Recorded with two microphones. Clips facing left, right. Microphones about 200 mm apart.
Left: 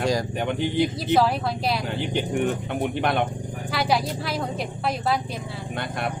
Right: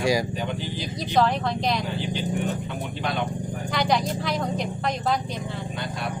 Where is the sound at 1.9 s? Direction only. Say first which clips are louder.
Left 2 dB; 60° left (ahead or behind).